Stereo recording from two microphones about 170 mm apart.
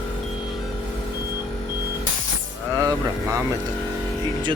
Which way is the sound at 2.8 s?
20° right (ahead or behind).